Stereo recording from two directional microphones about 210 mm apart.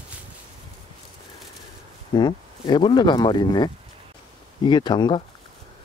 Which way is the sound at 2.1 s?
20° left (ahead or behind).